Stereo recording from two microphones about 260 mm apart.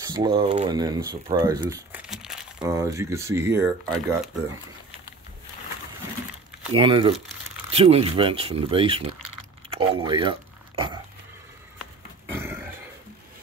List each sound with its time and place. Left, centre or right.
0.0 s speech: centre
2.6 s speech: centre
6.7 s speech: centre
12.3 s burping: centre